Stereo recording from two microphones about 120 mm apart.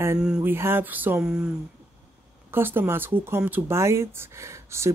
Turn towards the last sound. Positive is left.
turn(degrees=-25)  # may be behind; listen again after turning